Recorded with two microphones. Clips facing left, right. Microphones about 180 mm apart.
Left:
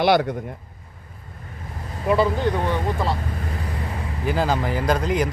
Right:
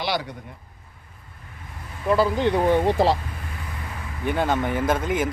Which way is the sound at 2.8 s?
85° right.